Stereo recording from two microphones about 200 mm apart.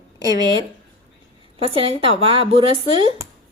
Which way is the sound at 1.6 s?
30° right (ahead or behind).